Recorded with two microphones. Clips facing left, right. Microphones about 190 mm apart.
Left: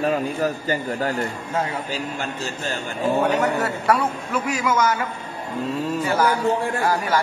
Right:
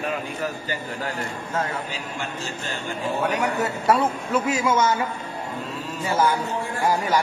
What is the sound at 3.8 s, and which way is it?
A man's voice, 25° right (ahead or behind).